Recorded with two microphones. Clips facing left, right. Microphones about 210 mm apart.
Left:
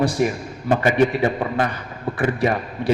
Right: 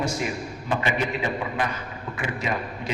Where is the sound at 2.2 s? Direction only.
55° left (ahead or behind).